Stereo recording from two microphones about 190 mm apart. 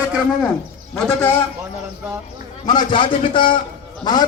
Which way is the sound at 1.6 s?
15° right (ahead or behind).